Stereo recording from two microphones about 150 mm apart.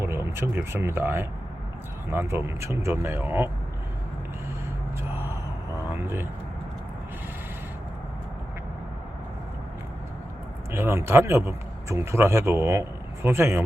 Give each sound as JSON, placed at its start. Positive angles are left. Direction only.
{"t": 0.0, "sound": "a man's voice", "side_deg": -15}
{"t": 5.1, "sound": "a sound", "side_deg": -15}
{"t": 5.9, "sound": "vehicle", "side_deg": -15}
{"t": 10.7, "sound": "a man's voice", "side_deg": -15}